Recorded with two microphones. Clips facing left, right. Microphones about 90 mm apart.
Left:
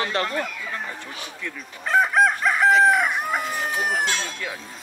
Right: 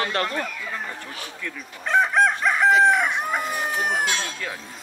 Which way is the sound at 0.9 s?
20° left (ahead or behind).